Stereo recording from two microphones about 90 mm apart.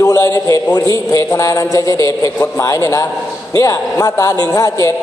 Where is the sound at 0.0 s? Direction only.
35° left (ahead or behind).